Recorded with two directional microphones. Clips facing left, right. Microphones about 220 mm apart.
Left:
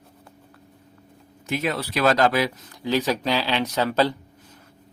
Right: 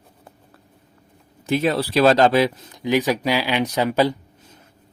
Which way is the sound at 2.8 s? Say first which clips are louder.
Right 3 dB; 15° right (ahead or behind).